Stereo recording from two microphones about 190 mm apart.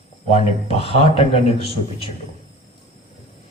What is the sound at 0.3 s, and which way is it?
Speech, 35° left (ahead or behind).